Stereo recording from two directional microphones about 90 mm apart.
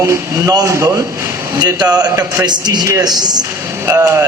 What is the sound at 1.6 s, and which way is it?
Speech, 50° right (ahead or behind).